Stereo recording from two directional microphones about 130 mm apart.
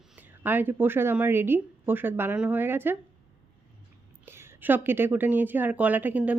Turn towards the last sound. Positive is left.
turn(degrees=-10)  # may be behind; listen again after turning